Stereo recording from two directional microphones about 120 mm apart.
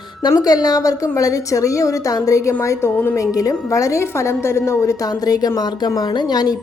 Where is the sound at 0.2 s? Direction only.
30° left (ahead or behind).